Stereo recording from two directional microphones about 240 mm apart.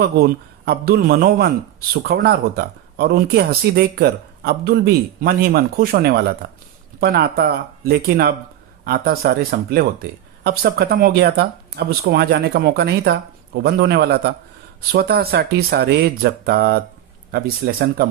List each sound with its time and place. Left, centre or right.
0.0 s speech: right